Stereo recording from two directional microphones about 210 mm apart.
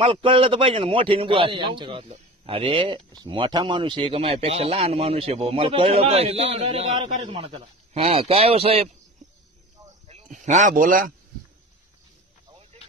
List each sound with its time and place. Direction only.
0.0 s a man's voice: 25° right (ahead or behind)
10.0 s speech: 35° right (ahead or behind)
12.7 s a sound: 30° right (ahead or behind)